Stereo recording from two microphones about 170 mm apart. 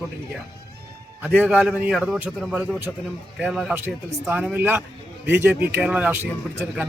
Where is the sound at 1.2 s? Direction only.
10° right (ahead or behind).